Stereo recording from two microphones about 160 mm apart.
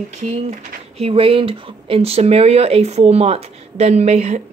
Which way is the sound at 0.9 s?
35° right (ahead or behind).